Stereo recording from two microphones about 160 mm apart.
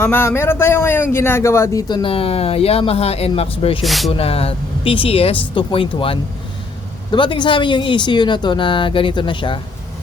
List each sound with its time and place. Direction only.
0.0 s speech: 15° left (ahead or behind); by 3.8 s 35° left (ahead or behind)
3.8 s speech: centre (ahead or behind)
4.2 s speech: 35° left (ahead or behind)